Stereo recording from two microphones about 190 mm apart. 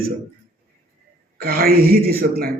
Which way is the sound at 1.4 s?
50° right (ahead or behind).